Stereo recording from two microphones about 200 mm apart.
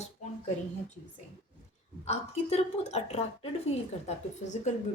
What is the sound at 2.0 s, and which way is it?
Speech, 35° left (ahead or behind).